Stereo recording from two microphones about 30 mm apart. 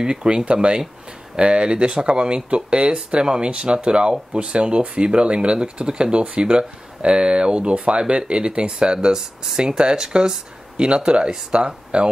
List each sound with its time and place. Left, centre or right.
0.0 s speech: right
9.1 s speech: centre